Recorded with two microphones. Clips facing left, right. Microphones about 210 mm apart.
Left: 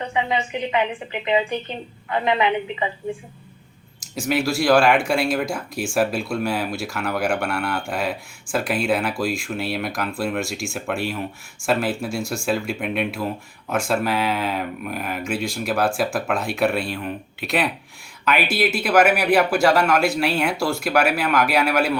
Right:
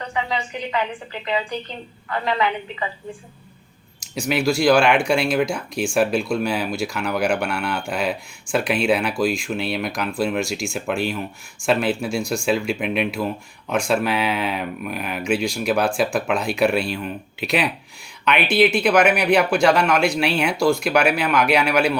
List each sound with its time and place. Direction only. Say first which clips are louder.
0.0 s a woman's voice: left 2 dB; 20° left (ahead or behind)
4.1 s speech: right 1 dB; centre (ahead or behind)